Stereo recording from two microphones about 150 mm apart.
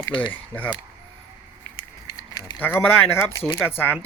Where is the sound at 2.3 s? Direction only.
30° left (ahead or behind).